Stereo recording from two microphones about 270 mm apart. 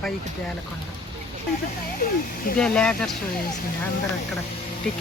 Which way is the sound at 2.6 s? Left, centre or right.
Centre.